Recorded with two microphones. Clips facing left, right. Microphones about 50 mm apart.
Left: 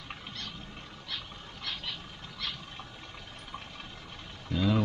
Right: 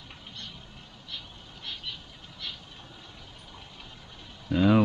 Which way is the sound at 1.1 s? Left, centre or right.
Left.